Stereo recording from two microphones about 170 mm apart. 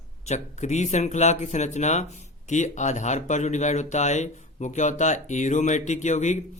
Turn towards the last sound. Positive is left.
turn(degrees=45)  # may be behind; listen again after turning